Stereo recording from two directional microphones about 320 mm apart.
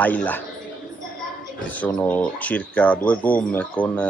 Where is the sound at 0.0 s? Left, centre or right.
Centre.